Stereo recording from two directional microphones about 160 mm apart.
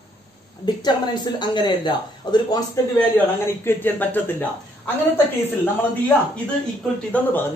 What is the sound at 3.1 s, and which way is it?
A woman's voice, 15° left (ahead or behind).